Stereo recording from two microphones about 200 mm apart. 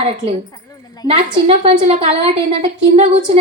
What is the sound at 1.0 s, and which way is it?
A woman's voice, 30° right (ahead or behind).